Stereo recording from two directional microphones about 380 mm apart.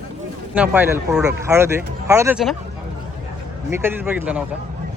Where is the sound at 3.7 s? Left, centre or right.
Centre.